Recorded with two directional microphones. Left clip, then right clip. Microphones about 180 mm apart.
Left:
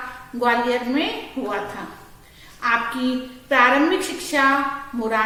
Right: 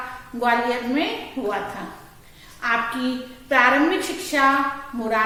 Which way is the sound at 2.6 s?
20° left (ahead or behind).